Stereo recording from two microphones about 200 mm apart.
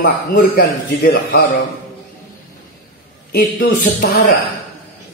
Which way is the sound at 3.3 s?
45° left (ahead or behind).